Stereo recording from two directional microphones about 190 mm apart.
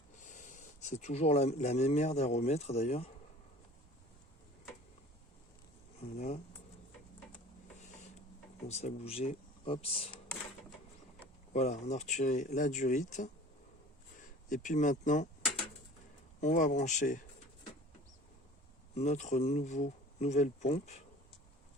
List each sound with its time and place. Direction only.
0.2 s speech: 40° left (ahead or behind)
6.0 s a sound: 35° left (ahead or behind)
8.6 s speech: 35° left (ahead or behind)
11.5 s speech: 35° left (ahead or behind)
16.4 s speech: 40° left (ahead or behind)
18.9 s speech: 35° left (ahead or behind)